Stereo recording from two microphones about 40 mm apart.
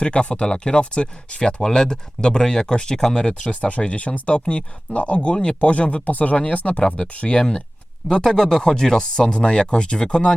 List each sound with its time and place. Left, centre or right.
0.0 s speech: left
6.8 s speech: left